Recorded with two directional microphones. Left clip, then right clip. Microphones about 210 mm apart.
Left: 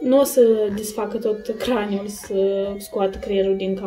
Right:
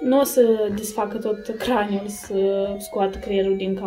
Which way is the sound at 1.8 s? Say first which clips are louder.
Right 1 dB; 40° right (ahead or behind).